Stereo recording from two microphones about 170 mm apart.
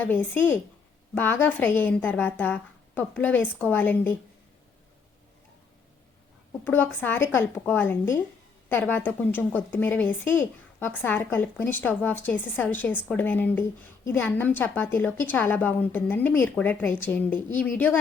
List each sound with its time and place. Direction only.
0.0 s a woman's voice: 10° left (ahead or behind)
6.7 s a woman's voice: 10° left (ahead or behind)